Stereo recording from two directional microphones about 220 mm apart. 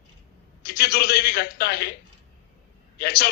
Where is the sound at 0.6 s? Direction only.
45° left (ahead or behind).